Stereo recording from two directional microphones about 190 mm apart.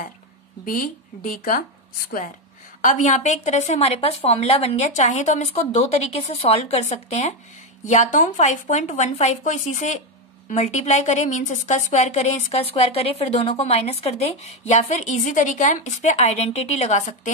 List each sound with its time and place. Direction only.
0.7 s a woman's voice: 45° left (ahead or behind)